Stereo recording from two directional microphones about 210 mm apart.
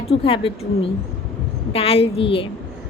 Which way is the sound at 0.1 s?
25° left (ahead or behind).